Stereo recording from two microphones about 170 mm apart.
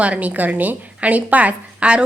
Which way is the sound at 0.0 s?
10° right (ahead or behind).